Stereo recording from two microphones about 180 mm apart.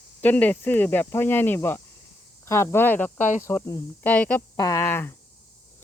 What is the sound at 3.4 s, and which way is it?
Speech, 15° left (ahead or behind).